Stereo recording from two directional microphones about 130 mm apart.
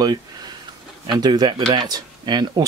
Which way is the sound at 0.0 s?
30° right (ahead or behind).